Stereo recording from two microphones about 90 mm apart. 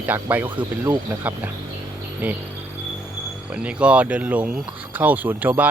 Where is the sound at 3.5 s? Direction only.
15° right (ahead or behind).